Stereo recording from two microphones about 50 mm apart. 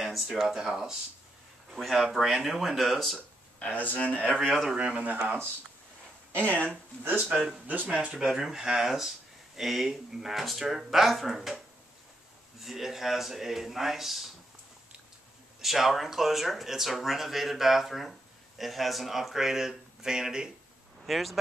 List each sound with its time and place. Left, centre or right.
0.0 s speech: centre
3.7 s speech: left
4.5 s speech: centre
4.7 s speech: right
7.2 s speech: right
7.6 s speech: right
8.1 s speech: centre
15.6 s speech: centre
21.0 s a sound: centre